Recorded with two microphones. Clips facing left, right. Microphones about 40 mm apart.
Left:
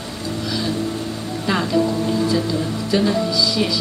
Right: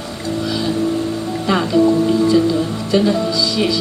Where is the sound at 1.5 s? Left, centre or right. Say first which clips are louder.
Right 5 dB; centre.